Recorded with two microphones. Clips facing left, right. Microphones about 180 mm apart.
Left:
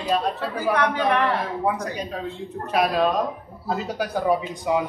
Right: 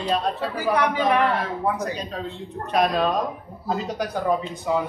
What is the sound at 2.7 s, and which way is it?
A man's voice, 5° left (ahead or behind).